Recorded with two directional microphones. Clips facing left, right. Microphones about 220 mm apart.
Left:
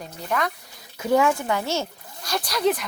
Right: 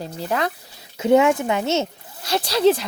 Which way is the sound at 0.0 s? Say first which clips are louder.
Right 3 dB; 30° right (ahead or behind).